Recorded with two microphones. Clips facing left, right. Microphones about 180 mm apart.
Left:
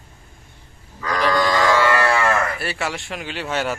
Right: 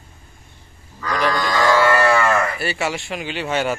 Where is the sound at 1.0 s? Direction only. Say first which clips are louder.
Right 1 dB; centre (ahead or behind).